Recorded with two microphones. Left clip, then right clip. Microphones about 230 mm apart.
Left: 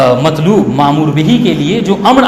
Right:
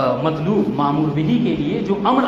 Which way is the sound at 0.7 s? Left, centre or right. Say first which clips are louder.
Left 9 dB; left.